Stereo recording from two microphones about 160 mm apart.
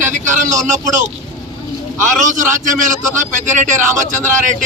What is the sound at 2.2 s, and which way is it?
A man's voice, 55° right (ahead or behind).